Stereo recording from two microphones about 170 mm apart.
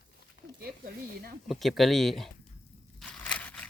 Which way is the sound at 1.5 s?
Centre (ahead or behind).